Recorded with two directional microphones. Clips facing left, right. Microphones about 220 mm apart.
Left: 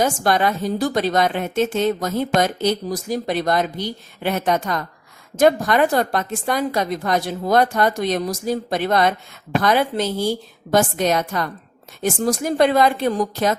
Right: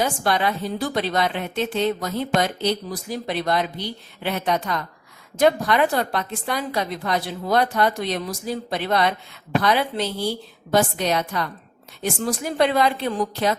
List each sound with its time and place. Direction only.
0.0 s a woman's voice: 45° left (ahead or behind)